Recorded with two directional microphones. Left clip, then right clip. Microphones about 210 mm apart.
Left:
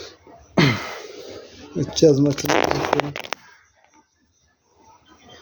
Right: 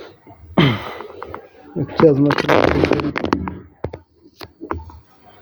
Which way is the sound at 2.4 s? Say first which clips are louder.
Right 5 dB; 50° left (ahead or behind).